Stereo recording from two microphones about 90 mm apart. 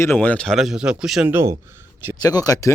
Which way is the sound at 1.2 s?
25° right (ahead or behind).